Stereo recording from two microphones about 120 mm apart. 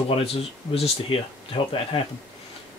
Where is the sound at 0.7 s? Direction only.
50° left (ahead or behind).